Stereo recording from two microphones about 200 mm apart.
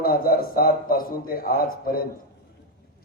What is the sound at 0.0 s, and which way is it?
A man's voice, 45° left (ahead or behind).